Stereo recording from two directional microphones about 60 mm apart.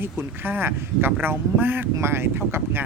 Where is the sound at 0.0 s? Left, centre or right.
Right.